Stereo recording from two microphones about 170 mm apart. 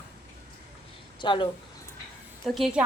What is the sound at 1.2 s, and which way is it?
Speech, 30° left (ahead or behind).